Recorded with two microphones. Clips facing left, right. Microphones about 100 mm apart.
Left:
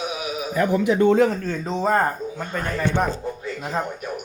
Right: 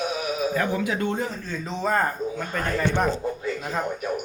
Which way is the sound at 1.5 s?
35° left (ahead or behind).